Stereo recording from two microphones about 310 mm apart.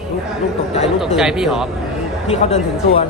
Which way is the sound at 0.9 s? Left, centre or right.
Centre.